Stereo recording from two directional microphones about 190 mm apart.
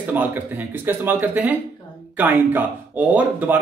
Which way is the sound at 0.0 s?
10° right (ahead or behind).